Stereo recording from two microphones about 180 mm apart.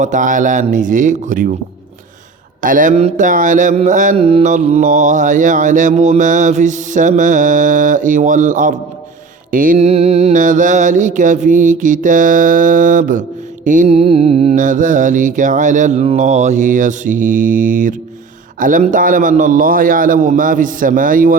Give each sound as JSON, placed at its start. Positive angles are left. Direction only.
{"t": 0.0, "sound": "mantra", "side_deg": -45}
{"t": 2.6, "sound": "mantra", "side_deg": -50}
{"t": 14.5, "sound": "mantra", "side_deg": -45}